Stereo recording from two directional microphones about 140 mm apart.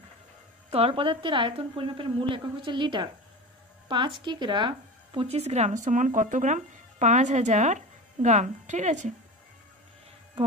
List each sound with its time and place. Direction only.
0.7 s a woman's voice: 45° right (ahead or behind); by 9.1 s 60° right (ahead or behind)